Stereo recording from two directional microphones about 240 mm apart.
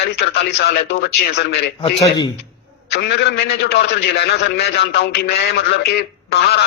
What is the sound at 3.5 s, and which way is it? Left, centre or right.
A man's voice, left.